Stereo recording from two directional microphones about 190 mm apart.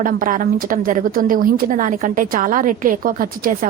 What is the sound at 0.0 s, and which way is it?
A woman's voice, 45° right (ahead or behind).